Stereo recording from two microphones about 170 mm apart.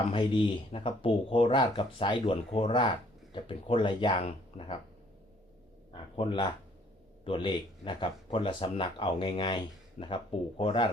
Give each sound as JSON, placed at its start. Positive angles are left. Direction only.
{"t": 0.1, "sound": "speech", "side_deg": 30}
{"t": 6.1, "sound": "speech", "side_deg": 30}
{"t": 10.0, "sound": "speech", "side_deg": 40}